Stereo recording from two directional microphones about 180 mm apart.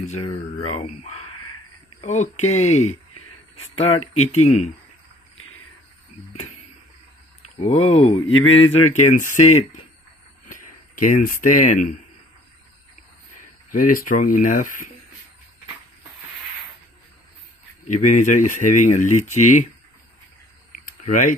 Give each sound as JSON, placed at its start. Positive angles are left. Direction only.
{"t": 0.2, "sound": "speech", "side_deg": 30}
{"t": 7.5, "sound": "speech", "side_deg": 35}
{"t": 13.7, "sound": "speech", "side_deg": 50}
{"t": 17.9, "sound": "speech", "side_deg": 45}
{"t": 21.0, "sound": "speech", "side_deg": 45}